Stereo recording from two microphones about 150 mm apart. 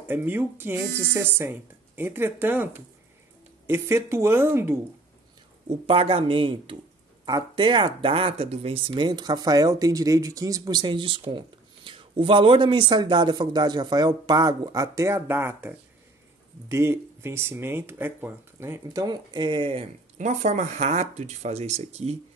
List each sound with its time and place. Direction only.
0.1 s speech: 15° right (ahead or behind)
5.9 s speech: 35° right (ahead or behind)
20.2 s speech: 50° right (ahead or behind)